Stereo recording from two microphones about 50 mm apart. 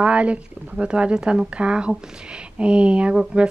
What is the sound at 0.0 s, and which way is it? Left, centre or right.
A woman's voice, right.